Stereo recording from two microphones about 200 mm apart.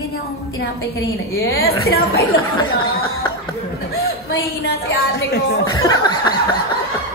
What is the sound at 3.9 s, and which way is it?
A woman's voice, 50° left (ahead or behind).